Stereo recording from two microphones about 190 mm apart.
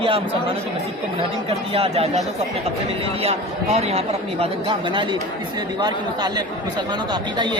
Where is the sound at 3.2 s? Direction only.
35° right (ahead or behind).